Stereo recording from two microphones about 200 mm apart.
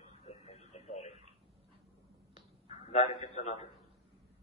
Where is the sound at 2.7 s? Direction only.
30° left (ahead or behind).